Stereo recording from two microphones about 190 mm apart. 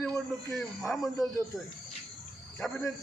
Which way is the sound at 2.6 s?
Centre (ahead or behind).